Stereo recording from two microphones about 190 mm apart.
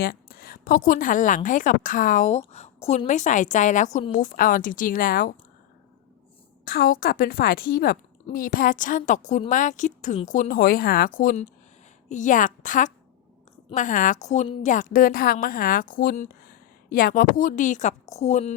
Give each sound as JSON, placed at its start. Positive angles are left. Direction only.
{"t": 0.0, "sound": "a woman's voice", "side_deg": 50}
{"t": 6.7, "sound": "a woman's voice", "side_deg": 50}